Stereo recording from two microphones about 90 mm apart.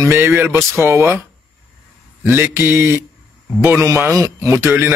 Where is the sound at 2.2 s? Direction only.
25° right (ahead or behind).